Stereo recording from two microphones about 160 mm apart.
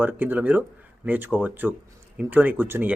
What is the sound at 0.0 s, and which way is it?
Speech, 10° right (ahead or behind).